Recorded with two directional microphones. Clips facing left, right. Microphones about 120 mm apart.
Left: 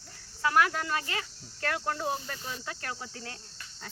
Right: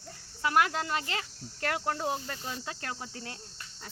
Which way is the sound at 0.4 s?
20° right (ahead or behind).